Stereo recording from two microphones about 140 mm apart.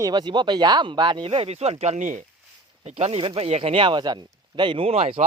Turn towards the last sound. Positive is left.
turn(degrees=-45)  # may be behind; listen again after turning